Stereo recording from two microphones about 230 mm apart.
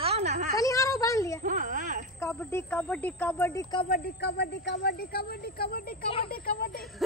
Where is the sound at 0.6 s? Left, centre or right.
Centre.